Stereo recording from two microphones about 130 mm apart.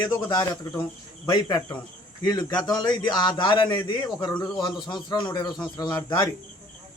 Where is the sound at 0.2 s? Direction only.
30° left (ahead or behind).